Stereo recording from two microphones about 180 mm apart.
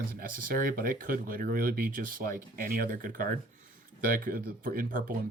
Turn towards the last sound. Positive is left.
turn(degrees=-50)  # may be behind; listen again after turning